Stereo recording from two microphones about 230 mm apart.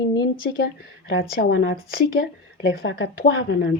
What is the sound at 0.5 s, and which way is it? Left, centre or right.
Speech, left.